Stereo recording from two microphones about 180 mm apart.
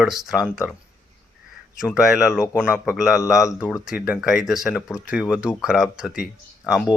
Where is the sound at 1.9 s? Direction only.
5° right (ahead or behind).